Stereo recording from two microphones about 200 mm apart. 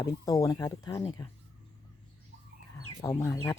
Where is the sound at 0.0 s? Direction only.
15° left (ahead or behind).